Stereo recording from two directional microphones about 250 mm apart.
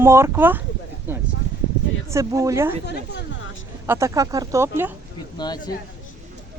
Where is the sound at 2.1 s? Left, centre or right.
Centre.